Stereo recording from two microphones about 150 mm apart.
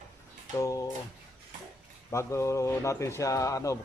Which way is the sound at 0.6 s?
20° left (ahead or behind).